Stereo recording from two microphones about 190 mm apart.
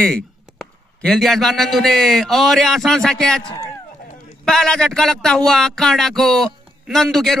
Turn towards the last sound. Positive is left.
turn(degrees=0)  # may be behind; listen again after turning